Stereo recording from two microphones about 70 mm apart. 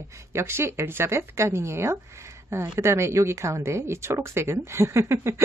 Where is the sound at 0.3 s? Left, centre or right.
Right.